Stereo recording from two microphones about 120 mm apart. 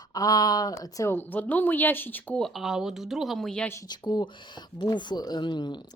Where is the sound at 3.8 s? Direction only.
35° left (ahead or behind).